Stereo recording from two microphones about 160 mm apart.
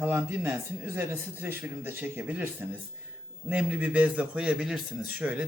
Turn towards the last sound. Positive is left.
turn(degrees=-10)  # may be behind; listen again after turning